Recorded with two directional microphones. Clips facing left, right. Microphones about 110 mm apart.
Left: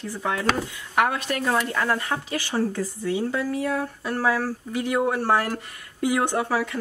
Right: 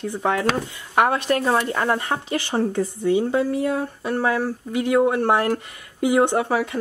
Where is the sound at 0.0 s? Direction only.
25° right (ahead or behind).